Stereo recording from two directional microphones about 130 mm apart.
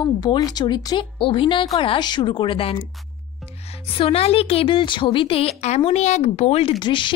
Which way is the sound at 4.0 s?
50° left (ahead or behind).